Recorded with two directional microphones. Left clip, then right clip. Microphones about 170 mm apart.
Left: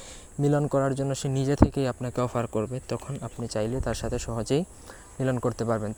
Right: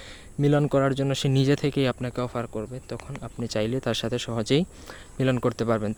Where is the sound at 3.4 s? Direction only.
20° right (ahead or behind).